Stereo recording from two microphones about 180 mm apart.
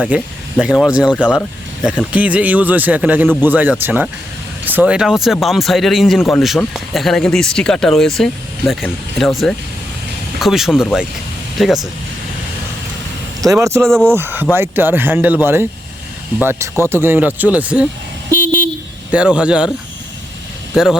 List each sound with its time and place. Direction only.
0.1 s speech: 10° right (ahead or behind)
13.4 s speech: 20° right (ahead or behind)
13.8 s speech: 5° left (ahead or behind)
14.1 s speech: 10° right (ahead or behind)
19.1 s speech: 5° right (ahead or behind)
20.7 s speech: centre (ahead or behind)